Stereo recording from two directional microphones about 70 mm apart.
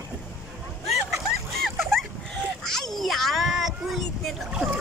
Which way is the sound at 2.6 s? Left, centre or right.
Centre.